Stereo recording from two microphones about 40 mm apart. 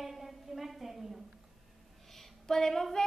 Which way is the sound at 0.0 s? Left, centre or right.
Centre.